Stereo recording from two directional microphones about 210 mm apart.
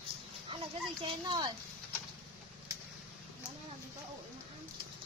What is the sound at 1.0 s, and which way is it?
Speech, 20° right (ahead or behind).